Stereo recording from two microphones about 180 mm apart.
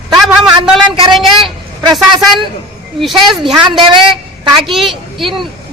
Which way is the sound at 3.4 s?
25° right (ahead or behind).